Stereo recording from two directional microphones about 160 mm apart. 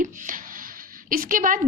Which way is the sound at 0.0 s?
55° right (ahead or behind).